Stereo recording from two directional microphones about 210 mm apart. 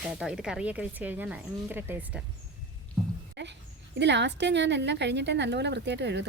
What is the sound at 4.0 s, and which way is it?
A woman's voice, 55° right (ahead or behind).